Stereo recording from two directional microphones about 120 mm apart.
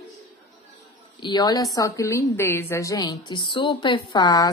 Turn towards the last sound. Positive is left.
turn(degrees=35)  # may be behind; listen again after turning